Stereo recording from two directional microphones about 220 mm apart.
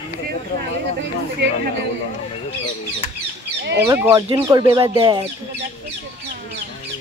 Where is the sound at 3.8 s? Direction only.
10° right (ahead or behind).